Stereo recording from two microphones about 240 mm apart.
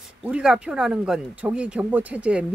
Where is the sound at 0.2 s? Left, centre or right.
Centre.